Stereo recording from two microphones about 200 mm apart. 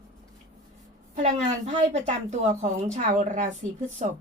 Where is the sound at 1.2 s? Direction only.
35° right (ahead or behind).